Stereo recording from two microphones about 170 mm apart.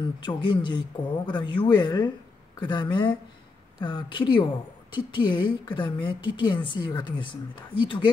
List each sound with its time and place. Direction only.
0.0 s a woman's voice: 25° left (ahead or behind)